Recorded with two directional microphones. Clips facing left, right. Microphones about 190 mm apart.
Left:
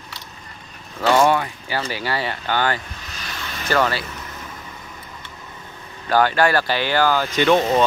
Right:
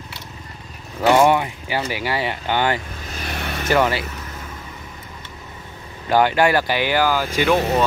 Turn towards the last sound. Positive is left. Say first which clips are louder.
# left 1 dB
turn(degrees=-5)  # may be behind; listen again after turning